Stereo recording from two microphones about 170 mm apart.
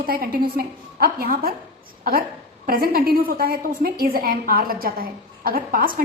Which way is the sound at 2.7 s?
60° right (ahead or behind).